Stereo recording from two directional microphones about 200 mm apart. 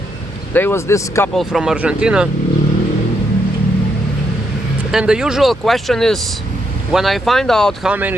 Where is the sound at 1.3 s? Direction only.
Centre (ahead or behind).